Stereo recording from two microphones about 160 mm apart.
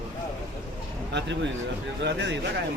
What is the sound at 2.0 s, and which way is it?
Speech, 90° right.